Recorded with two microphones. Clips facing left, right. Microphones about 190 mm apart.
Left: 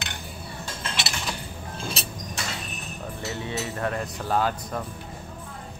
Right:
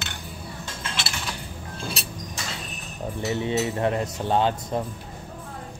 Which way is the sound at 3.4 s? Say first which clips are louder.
Right 6 dB; 20° right (ahead or behind).